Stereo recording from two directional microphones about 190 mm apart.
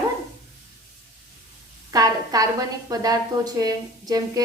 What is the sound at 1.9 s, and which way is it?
A woman's voice, 20° right (ahead or behind).